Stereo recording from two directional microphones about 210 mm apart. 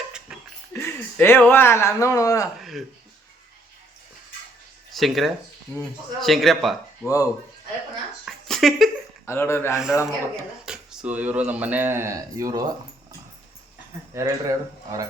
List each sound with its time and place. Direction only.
0.3 s a sound: 5° right (ahead or behind)
0.7 s speech: 10° left (ahead or behind)
2.6 s speech: centre (ahead or behind)
4.9 s a man's voice: centre (ahead or behind)
7.0 s speech: 15° left (ahead or behind)
8.2 s a sound: centre (ahead or behind)
9.2 s speech: 10° left (ahead or behind)
10.7 s speech: 5° right (ahead or behind)
14.1 s speech: 15° right (ahead or behind)